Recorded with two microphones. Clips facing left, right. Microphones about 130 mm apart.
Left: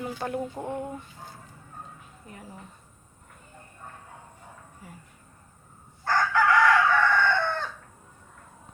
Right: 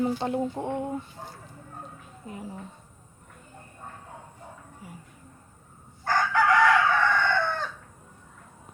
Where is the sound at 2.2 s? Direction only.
20° right (ahead or behind).